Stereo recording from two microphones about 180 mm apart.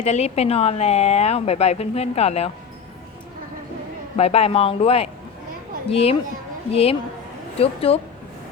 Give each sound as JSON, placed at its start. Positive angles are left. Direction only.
{"t": 0.0, "sound": "speech", "side_deg": 35}
{"t": 4.2, "sound": "speech", "side_deg": 35}